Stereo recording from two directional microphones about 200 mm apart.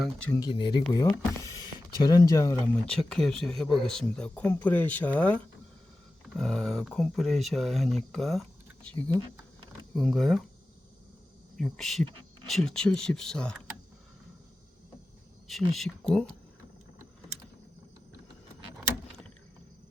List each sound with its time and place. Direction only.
0.0 s speech: 5° left (ahead or behind)
0.3 s speech: 25° left (ahead or behind)
3.1 s speech: centre (ahead or behind)
11.5 s speech: centre (ahead or behind)
15.4 s speech: centre (ahead or behind)